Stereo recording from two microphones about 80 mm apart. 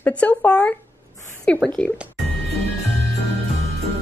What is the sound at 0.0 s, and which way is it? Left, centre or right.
Speech, centre.